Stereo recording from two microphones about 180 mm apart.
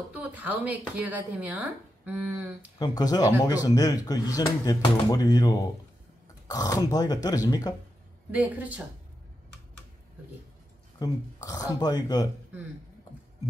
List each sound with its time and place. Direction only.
0.1 s speech: 10° right (ahead or behind)
2.8 s speech: 20° left (ahead or behind)
8.3 s speech: 10° right (ahead or behind)
11.0 s speech: 20° left (ahead or behind)